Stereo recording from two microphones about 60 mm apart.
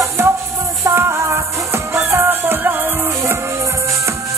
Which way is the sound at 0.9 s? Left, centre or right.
Right.